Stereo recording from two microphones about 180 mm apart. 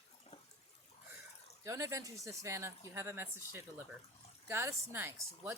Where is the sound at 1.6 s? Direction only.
15° right (ahead or behind).